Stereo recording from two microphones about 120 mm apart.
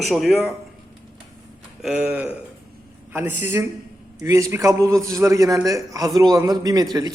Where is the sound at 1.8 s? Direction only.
10° right (ahead or behind).